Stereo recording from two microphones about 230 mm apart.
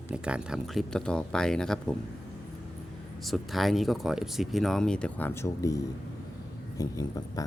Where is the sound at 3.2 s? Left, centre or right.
Centre.